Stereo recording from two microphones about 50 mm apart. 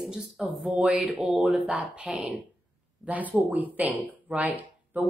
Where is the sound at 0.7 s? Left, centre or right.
Right.